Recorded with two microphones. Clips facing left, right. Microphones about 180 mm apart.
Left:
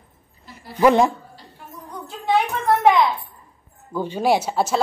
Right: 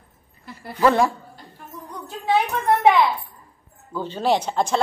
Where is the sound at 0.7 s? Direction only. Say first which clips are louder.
Left 3 dB; 20° left (ahead or behind).